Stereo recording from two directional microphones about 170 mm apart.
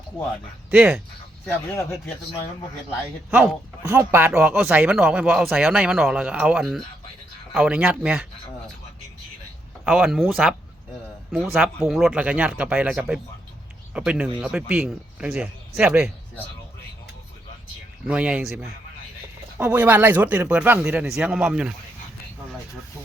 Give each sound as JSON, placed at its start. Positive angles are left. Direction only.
{"t": 0.7, "sound": "speech", "side_deg": -5}
{"t": 1.5, "sound": "speech", "side_deg": 15}
{"t": 3.2, "sound": "speech", "side_deg": -15}
{"t": 4.3, "sound": "speech", "side_deg": 0}
{"t": 9.8, "sound": "speech", "side_deg": -10}
{"t": 11.5, "sound": "speech", "side_deg": -5}
{"t": 18.1, "sound": "speech", "side_deg": -5}